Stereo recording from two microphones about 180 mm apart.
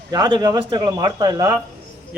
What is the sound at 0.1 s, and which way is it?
Speech, 25° right (ahead or behind).